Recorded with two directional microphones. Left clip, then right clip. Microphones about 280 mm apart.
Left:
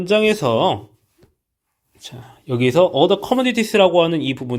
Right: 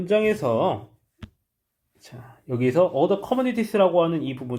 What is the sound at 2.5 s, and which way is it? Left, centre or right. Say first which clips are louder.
Speech: left 5 dB; left.